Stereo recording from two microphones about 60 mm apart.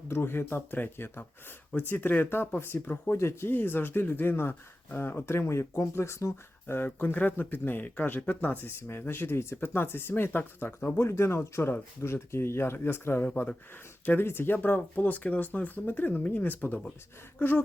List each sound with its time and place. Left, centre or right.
0.1 s speech: left
2.7 s speech: left
3.1 s speech: left
6.7 s speech: left
13.3 s speech: centre
14.0 s speech: left